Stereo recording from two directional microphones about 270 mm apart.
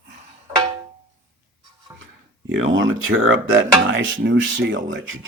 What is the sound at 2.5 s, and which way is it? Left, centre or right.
Speech, right.